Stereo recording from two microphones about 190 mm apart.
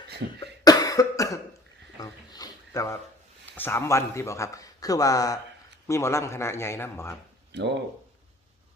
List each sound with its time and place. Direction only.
0.3 s cough: 20° left (ahead or behind)
2.0 s a sound: 20° left (ahead or behind)
3.5 s a man's voice: 10° left (ahead or behind)